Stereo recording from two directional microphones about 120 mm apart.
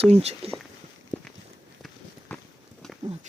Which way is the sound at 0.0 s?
60° right (ahead or behind).